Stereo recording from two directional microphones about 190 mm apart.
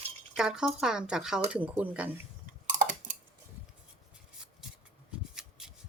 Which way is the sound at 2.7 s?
40° right (ahead or behind).